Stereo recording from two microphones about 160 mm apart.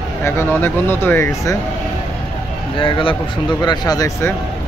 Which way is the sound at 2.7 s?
30° left (ahead or behind).